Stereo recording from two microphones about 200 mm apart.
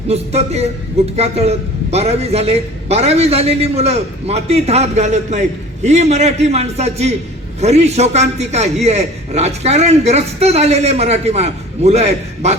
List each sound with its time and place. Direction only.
0.1 s a man's voice: 30° right (ahead or behind)